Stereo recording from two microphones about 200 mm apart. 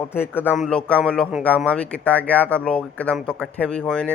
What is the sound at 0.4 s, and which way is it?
Speech, centre (ahead or behind).